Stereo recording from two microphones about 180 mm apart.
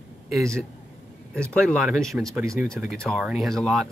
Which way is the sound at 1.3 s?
5° left (ahead or behind).